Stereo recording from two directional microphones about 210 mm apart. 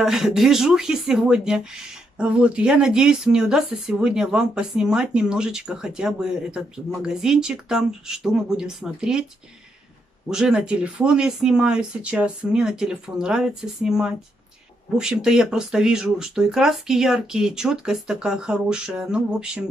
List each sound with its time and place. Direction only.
0.0 s speech: centre (ahead or behind)
10.3 s speech: 5° right (ahead or behind)